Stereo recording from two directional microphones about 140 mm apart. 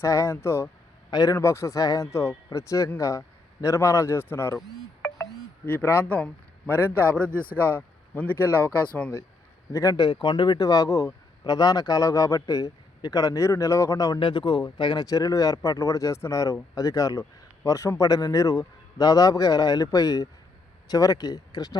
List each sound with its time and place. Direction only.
0.0 s speech: 20° left (ahead or behind)
9.7 s speech: 25° left (ahead or behind)